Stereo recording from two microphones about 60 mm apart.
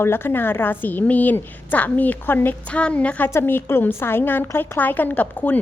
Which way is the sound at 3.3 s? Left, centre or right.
Left.